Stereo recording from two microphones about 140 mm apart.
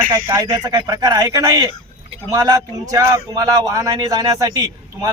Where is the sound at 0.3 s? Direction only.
30° right (ahead or behind).